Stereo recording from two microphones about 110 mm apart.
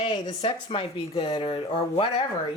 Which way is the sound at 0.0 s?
50° left (ahead or behind).